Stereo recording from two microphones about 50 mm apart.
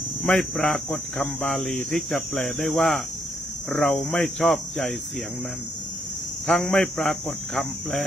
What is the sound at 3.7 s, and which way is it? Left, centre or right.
Speech, left.